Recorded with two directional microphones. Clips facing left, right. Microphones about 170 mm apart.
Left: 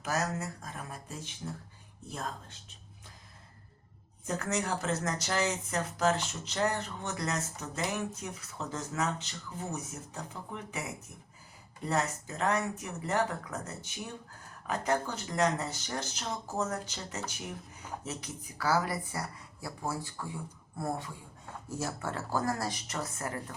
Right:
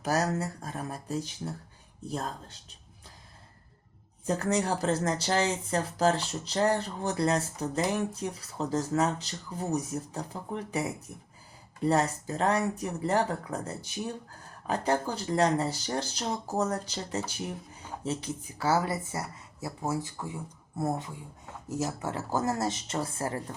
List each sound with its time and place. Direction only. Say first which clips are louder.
0.0 s speech: right 5 dB; 35° right (ahead or behind)
4.3 s speech: right 5 dB; 35° right (ahead or behind)